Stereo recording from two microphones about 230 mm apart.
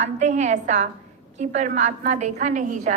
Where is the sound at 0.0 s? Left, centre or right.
Right.